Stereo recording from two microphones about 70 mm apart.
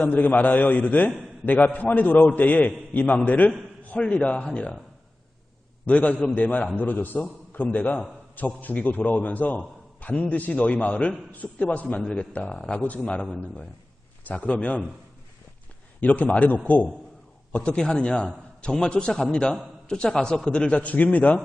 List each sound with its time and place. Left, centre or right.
0.0 s a man's voice: left
5.8 s a man's voice: centre
12.8 s a man's voice: left
14.3 s a man's voice: centre
16.0 s a man's voice: left